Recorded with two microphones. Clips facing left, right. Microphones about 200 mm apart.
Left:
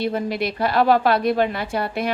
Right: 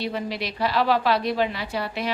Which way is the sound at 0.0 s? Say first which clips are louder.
Left 5 dB; 50° left (ahead or behind).